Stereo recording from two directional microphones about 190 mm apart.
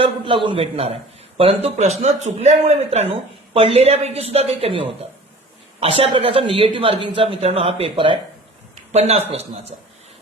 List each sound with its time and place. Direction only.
0.0 s a man's voice: 25° right (ahead or behind)
8.7 s a sound: 35° right (ahead or behind)
9.3 s speech: 30° right (ahead or behind)